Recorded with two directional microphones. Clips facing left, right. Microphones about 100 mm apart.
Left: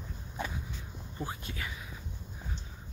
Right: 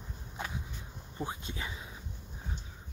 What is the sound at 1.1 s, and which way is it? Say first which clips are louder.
Speech: right 1 dB; 25° right (ahead or behind).